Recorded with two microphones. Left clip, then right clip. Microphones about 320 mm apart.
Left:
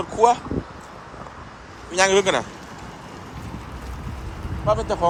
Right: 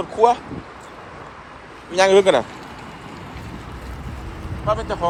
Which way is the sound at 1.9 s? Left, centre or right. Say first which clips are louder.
Right 4 dB; centre.